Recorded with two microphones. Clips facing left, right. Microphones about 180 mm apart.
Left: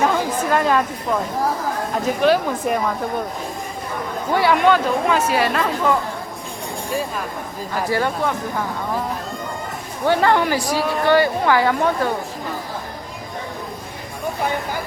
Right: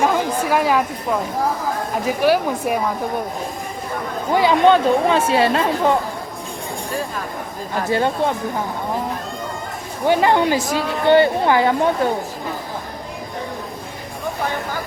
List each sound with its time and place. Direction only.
0.0 s chatter: 10° right (ahead or behind)
2.0 s speech: 10° right (ahead or behind)
4.3 s speech: 15° right (ahead or behind)
7.9 s speech: 25° right (ahead or behind)
10.1 s speech: 15° right (ahead or behind)